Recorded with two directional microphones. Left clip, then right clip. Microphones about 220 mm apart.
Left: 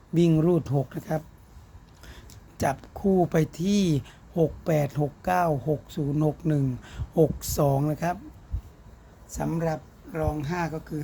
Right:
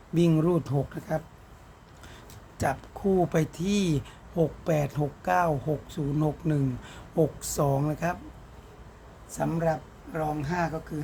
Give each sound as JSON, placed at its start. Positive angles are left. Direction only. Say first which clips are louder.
{"t": 0.1, "sound": "speech", "louder": "left 2 dB", "side_deg": 20}
{"t": 1.1, "sound": "speech", "louder": "even", "side_deg": 30}
{"t": 2.6, "sound": "speech", "louder": "left 2 dB", "side_deg": 30}
{"t": 9.3, "sound": "speech", "louder": "right 1 dB", "side_deg": 30}